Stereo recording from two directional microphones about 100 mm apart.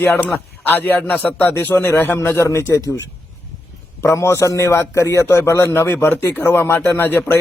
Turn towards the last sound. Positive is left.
turn(degrees=20)  # may be behind; listen again after turning